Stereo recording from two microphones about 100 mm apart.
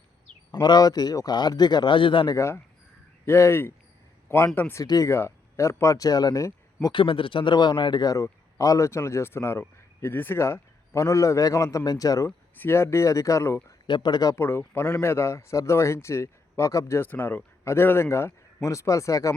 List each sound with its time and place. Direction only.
0.5 s a man's voice: 45° left (ahead or behind); by 2.3 s 60° left (ahead or behind)
2.3 s a man's voice: 30° left (ahead or behind)
6.9 s a man's voice: 60° left (ahead or behind)
8.1 s a man's voice: 35° left (ahead or behind)
12.5 s a man's voice: 25° left (ahead or behind)
13.8 s a man's voice: 50° left (ahead or behind)
14.3 s a man's voice: 25° left (ahead or behind)